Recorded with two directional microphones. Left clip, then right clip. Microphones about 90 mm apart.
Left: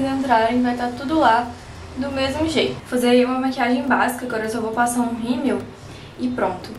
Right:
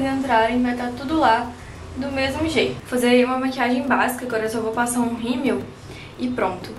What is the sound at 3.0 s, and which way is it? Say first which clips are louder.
A woman's voice: left 1 dB; 5° left (ahead or behind).